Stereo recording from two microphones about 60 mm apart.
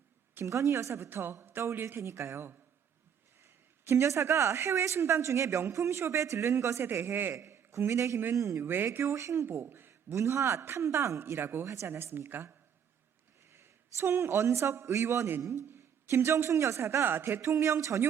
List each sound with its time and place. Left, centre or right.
0.4 s a woman's voice: right
6.9 s a man's voice: right
7.3 s a sound: right
7.9 s a man's voice: right
8.6 s a woman's voice: right
9.9 s a woman's voice: right
11.6 s a woman's voice: right
17.0 s a woman's voice: right